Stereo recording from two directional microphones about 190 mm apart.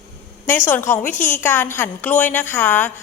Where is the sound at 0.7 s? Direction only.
10° left (ahead or behind).